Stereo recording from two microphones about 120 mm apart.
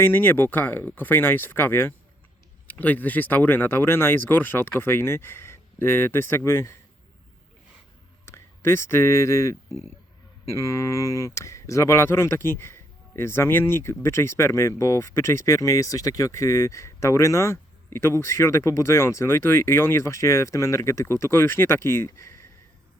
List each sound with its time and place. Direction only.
0.0 s speech: 20° left (ahead or behind)
8.2 s speech: 20° left (ahead or behind)